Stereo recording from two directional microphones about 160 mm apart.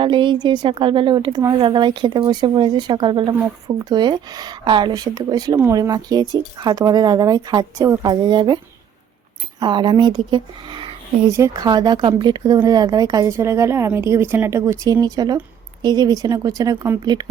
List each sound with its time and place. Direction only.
0.0 s speech: 30° right (ahead or behind)
9.6 s speech: 30° right (ahead or behind)
11.3 s a woman's voice: 20° right (ahead or behind)